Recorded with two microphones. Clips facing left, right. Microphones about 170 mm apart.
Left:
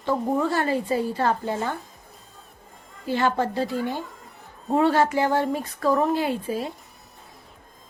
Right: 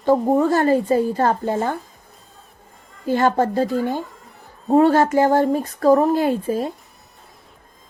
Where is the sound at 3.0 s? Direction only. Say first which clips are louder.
Right 5 dB; 45° right (ahead or behind).